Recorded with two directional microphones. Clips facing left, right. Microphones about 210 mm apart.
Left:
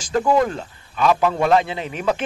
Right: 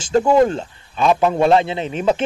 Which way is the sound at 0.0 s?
25° right (ahead or behind).